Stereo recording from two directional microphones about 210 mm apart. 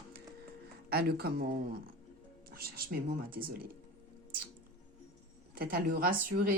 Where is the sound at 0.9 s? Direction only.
50° right (ahead or behind).